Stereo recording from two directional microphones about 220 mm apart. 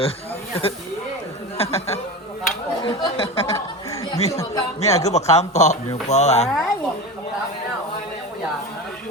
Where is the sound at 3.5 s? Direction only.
15° left (ahead or behind).